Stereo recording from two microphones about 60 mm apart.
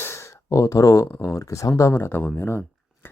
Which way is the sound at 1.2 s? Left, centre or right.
Left.